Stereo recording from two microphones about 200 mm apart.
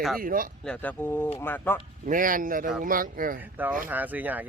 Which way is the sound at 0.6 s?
5° left (ahead or behind).